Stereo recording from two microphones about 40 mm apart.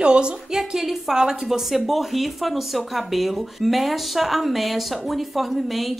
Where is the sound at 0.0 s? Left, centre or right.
Right.